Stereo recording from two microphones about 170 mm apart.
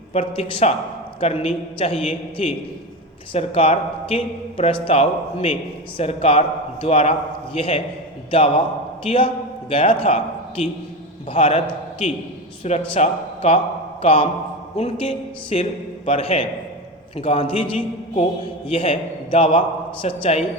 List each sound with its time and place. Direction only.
0.1 s a man's voice: 35° left (ahead or behind)